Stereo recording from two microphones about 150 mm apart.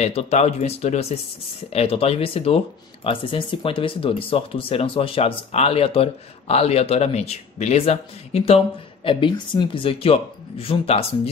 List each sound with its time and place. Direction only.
0.0 s speech: 45° left (ahead or behind)